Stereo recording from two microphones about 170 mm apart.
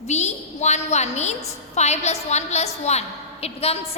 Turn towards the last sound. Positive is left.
turn(degrees=35)  # may be behind; listen again after turning